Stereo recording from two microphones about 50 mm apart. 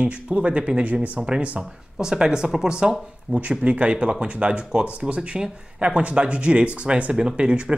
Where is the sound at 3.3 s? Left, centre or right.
Right.